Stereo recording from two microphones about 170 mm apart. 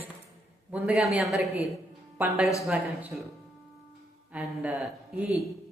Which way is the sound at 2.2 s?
15° right (ahead or behind).